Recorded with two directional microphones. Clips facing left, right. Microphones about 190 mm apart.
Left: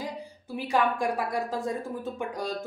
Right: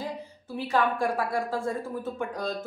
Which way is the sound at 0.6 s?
15° left (ahead or behind).